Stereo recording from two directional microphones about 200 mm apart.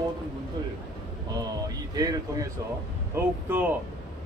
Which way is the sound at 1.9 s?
20° right (ahead or behind).